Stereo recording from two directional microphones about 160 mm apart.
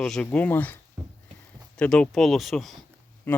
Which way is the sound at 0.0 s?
5° left (ahead or behind).